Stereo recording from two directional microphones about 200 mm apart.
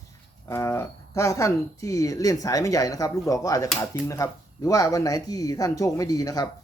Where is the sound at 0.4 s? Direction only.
15° left (ahead or behind).